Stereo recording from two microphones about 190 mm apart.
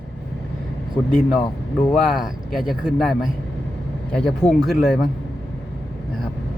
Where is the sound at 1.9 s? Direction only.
Centre (ahead or behind).